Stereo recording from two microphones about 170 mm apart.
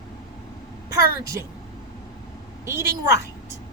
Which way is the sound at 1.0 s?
65° left (ahead or behind).